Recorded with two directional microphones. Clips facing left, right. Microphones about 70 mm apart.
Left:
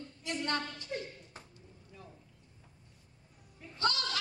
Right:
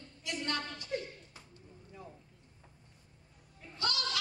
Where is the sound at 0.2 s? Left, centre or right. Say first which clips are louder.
Left 2 dB; left.